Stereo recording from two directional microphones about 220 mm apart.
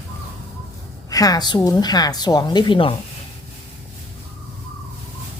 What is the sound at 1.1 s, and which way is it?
A woman's voice, 15° left (ahead or behind).